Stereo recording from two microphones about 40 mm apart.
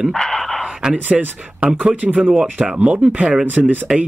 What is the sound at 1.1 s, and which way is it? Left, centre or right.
Speech, right.